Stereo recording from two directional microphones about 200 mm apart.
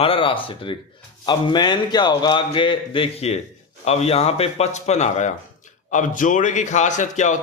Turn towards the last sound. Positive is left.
turn(degrees=35)  # may be behind; listen again after turning